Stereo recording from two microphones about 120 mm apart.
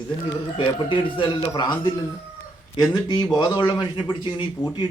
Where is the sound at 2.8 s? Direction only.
35° left (ahead or behind).